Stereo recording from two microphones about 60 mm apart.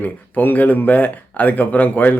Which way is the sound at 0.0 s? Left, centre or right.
Left.